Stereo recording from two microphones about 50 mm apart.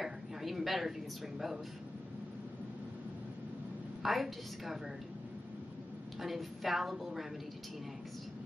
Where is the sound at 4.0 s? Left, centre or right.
Centre.